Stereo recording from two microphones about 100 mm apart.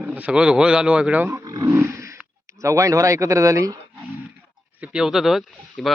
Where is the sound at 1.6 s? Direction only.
25° right (ahead or behind).